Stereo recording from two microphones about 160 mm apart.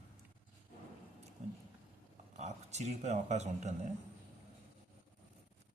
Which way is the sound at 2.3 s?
45° right (ahead or behind).